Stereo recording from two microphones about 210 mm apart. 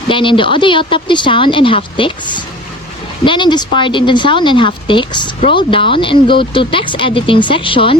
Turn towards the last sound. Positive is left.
turn(degrees=25)  # may be behind; listen again after turning